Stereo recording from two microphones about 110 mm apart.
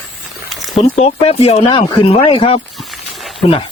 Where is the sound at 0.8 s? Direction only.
75° left (ahead or behind); by 2.6 s 55° left (ahead or behind).